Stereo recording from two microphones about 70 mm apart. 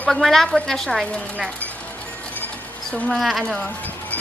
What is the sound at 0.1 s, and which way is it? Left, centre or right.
A woman's voice, centre.